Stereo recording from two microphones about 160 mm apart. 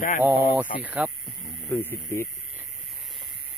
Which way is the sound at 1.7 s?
15° left (ahead or behind).